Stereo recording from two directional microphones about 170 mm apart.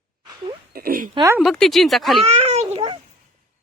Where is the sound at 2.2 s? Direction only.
35° right (ahead or behind).